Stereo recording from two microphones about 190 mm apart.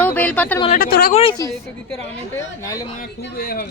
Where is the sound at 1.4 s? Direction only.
20° left (ahead or behind).